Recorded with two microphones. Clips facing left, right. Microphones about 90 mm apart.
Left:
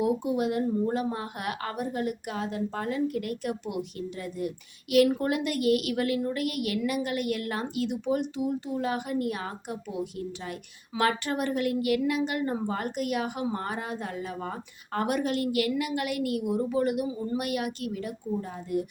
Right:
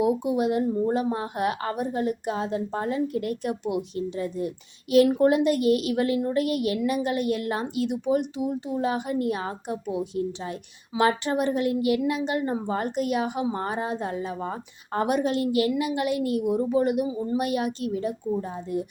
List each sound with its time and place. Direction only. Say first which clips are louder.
0.0 s speech: right 3 dB; 20° right (ahead or behind)